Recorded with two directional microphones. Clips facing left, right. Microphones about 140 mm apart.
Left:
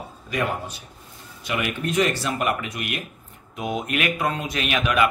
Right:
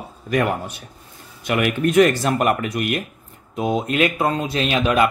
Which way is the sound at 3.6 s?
30° right (ahead or behind).